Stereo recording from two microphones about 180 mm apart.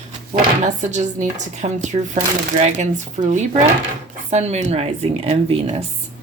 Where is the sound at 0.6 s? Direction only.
40° right (ahead or behind).